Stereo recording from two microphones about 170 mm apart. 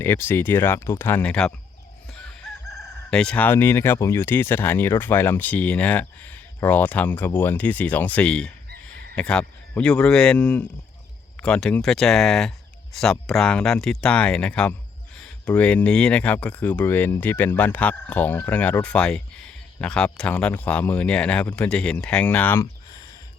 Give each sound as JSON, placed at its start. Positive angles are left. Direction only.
{"t": 0.0, "sound": "speech", "side_deg": 15}
{"t": 2.1, "sound": "chicken", "side_deg": 5}
{"t": 3.1, "sound": "speech", "side_deg": 5}
{"t": 22.6, "sound": "a sound", "side_deg": 20}